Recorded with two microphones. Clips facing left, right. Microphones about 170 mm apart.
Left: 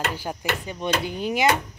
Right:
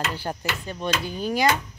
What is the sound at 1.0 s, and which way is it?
Speech, 20° left (ahead or behind).